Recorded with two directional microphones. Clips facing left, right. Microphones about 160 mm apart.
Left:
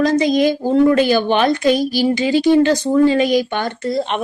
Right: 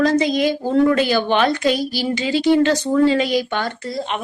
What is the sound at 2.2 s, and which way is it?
Female singing, 45° left (ahead or behind).